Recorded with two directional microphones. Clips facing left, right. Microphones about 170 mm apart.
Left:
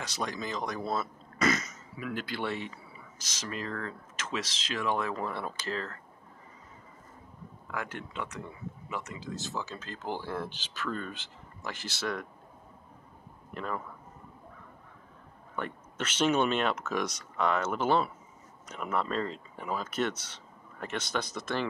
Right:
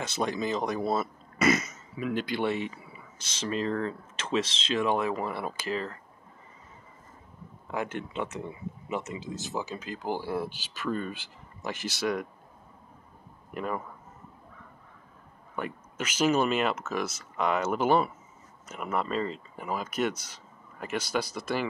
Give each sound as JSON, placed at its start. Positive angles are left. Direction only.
{"t": 0.0, "sound": "speech", "side_deg": -25}
{"t": 3.2, "sound": "speech", "side_deg": -30}
{"t": 7.6, "sound": "speech", "side_deg": -20}
{"t": 13.5, "sound": "speech", "side_deg": -10}
{"t": 15.5, "sound": "speech", "side_deg": -10}